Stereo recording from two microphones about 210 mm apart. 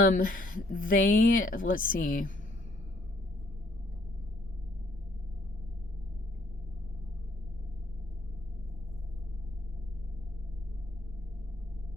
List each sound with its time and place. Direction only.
0.0 s speech: 40° left (ahead or behind)